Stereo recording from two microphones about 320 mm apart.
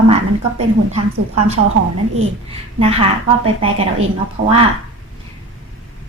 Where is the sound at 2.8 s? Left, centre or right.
Centre.